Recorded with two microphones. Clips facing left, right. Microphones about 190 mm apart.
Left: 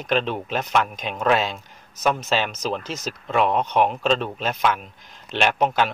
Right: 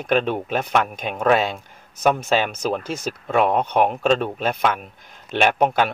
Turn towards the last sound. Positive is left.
turn(degrees=-50)  # may be behind; listen again after turning